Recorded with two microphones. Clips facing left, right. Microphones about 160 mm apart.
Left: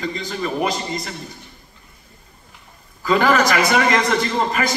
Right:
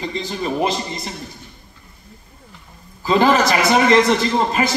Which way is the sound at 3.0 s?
25° right (ahead or behind).